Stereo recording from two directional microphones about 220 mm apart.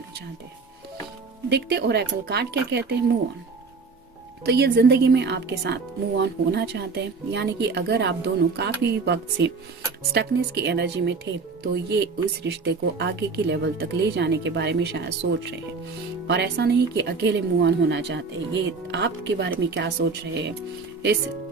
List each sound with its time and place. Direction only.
1.5 s speech: 50° right (ahead or behind)
4.4 s speech: 50° right (ahead or behind)